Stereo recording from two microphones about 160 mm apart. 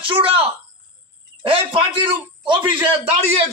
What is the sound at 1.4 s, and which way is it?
A man's voice, 35° right (ahead or behind).